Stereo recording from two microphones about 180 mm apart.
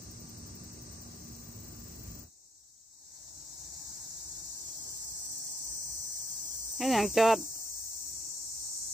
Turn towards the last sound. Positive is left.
turn(degrees=0)  # may be behind; listen again after turning